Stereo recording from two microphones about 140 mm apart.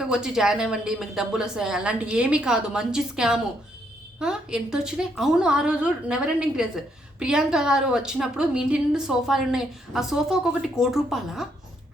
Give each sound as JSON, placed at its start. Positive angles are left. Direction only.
{"t": 0.0, "sound": "a woman's voice", "side_deg": -5}